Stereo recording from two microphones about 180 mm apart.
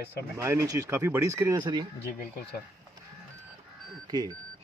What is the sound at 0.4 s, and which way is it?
Speech, 15° right (ahead or behind).